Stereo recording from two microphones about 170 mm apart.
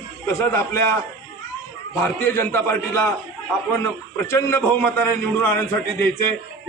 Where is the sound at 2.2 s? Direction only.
15° left (ahead or behind).